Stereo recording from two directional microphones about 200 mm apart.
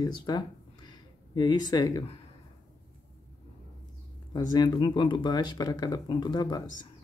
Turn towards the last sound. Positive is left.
turn(degrees=20)  # may be behind; listen again after turning